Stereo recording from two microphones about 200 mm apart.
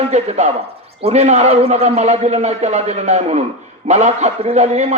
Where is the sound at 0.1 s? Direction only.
35° right (ahead or behind).